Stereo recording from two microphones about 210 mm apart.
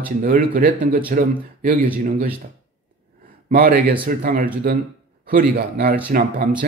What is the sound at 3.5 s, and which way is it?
A man's voice, 45° right (ahead or behind).